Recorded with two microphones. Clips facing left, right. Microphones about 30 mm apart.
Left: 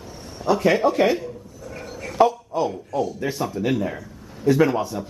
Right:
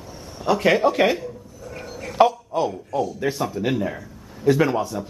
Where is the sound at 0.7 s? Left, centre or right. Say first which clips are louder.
Right 2 dB; centre.